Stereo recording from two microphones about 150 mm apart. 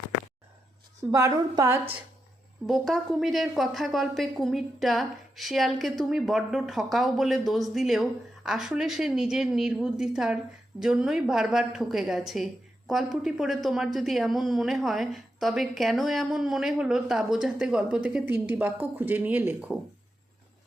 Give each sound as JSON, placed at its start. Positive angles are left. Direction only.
{"t": 1.1, "sound": "a woman's voice", "side_deg": -20}
{"t": 2.6, "sound": "a woman's voice", "side_deg": 0}